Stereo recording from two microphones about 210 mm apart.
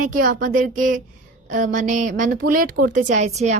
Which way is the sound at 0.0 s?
40° right (ahead or behind).